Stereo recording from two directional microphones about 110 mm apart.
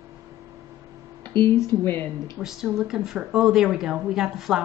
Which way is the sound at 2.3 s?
5° right (ahead or behind).